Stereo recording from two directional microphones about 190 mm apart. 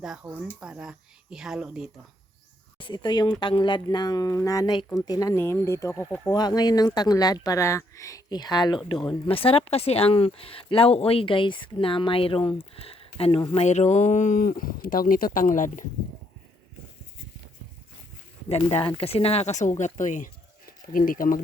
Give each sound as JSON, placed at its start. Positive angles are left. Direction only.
{"t": 0.0, "sound": "speech", "side_deg": -5}
{"t": 2.7, "sound": "speech", "side_deg": 25}
{"t": 6.3, "sound": "speech", "side_deg": 20}
{"t": 18.4, "sound": "speech", "side_deg": 35}